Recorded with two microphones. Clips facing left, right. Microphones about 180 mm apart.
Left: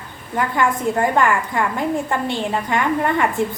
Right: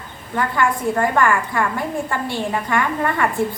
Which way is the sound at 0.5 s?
20° left (ahead or behind).